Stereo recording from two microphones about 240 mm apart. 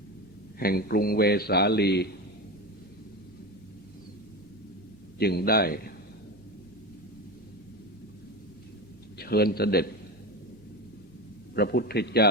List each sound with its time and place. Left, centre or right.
0.6 s a man's voice: left
5.2 s a man's voice: left
9.1 s a man's voice: left
11.5 s a man's voice: left